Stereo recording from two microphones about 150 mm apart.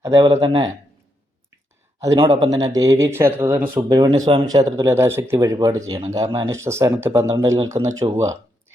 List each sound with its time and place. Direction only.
0.0 s speech: 25° right (ahead or behind)
2.0 s a man's voice: 20° right (ahead or behind)
3.8 s speech: 25° right (ahead or behind)